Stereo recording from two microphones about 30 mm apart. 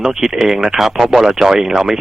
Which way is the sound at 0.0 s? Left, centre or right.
Centre.